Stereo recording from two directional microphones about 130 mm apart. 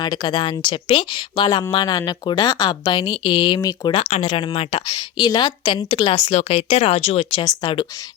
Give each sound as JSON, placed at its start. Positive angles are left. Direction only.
{"t": 0.0, "sound": "speech", "side_deg": 35}
{"t": 3.9, "sound": "a woman's voice", "side_deg": 50}
{"t": 4.3, "sound": "a woman's voice", "side_deg": 40}
{"t": 7.3, "sound": "speech", "side_deg": 35}